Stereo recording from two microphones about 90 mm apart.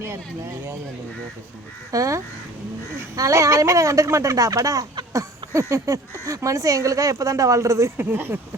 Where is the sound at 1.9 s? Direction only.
40° right (ahead or behind).